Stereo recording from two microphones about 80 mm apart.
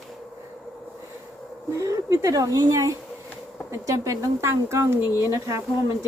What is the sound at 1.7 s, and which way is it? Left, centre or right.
A woman's voice, right.